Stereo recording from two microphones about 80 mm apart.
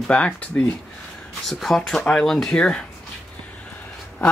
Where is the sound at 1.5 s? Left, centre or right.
Centre.